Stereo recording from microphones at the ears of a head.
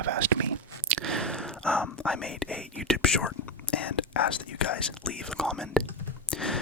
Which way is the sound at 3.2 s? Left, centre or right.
Left.